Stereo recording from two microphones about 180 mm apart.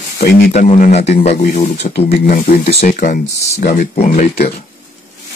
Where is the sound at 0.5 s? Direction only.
40° left (ahead or behind).